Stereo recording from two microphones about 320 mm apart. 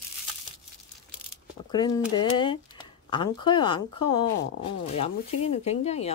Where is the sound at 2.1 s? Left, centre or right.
Centre.